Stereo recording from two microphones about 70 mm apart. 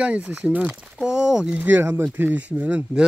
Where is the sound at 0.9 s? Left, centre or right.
Centre.